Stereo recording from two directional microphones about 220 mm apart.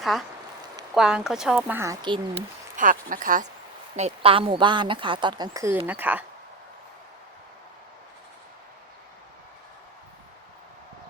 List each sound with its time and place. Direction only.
0.0 s speech: centre (ahead or behind); by 2.4 s 20° right (ahead or behind)
2.7 s speech: 35° right (ahead or behind); by 6.2 s 5° right (ahead or behind)